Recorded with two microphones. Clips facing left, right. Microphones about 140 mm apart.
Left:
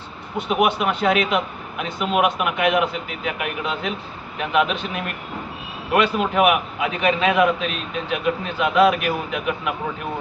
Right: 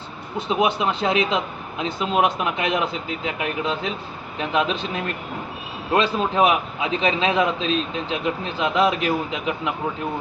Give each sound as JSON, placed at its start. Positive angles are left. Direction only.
{"t": 0.3, "sound": "a man's voice", "side_deg": -25}
{"t": 5.9, "sound": "a man's voice", "side_deg": -25}